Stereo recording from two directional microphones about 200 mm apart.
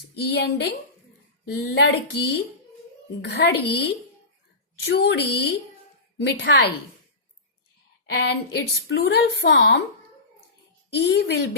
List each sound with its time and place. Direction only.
0.3 s a woman's voice: 55° left (ahead or behind)
8.1 s a woman's voice: 55° left (ahead or behind)
10.9 s a woman's voice: 60° left (ahead or behind)